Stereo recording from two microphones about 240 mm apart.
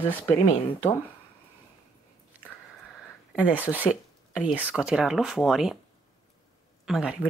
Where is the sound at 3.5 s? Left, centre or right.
Centre.